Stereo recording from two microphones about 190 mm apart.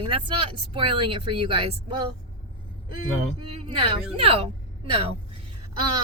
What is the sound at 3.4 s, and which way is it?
A woman's voice, 30° right (ahead or behind).